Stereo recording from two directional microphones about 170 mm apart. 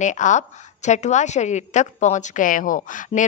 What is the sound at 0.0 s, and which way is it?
A woman's voice, 45° left (ahead or behind).